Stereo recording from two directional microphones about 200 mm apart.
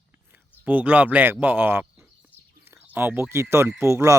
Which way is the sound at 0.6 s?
10° right (ahead or behind).